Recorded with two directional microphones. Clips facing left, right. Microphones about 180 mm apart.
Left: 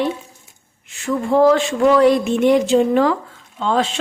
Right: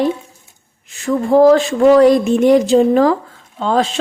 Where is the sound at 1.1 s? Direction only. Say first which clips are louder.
Right 4 dB; 40° right (ahead or behind).